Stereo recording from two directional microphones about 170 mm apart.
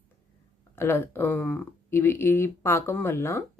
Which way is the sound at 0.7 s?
15° left (ahead or behind).